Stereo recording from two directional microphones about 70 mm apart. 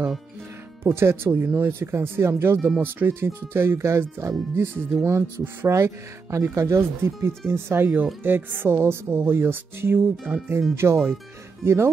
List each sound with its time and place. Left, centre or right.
0.8 s speech: right
5.0 s speech: right